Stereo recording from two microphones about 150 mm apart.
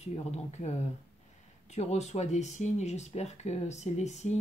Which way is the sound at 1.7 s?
45° left (ahead or behind).